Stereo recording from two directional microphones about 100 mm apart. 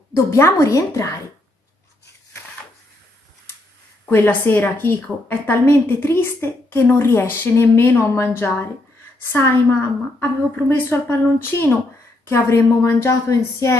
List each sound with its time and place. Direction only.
0.1 s a woman's voice: 30° left (ahead or behind)
4.0 s a woman's voice: 20° left (ahead or behind)